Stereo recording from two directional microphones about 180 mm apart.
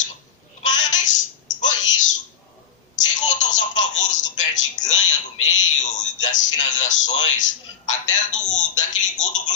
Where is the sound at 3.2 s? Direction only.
45° left (ahead or behind).